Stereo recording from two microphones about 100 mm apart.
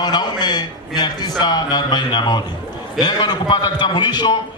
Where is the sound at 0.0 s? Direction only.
45° left (ahead or behind).